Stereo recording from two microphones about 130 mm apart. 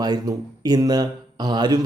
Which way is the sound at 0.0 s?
30° right (ahead or behind).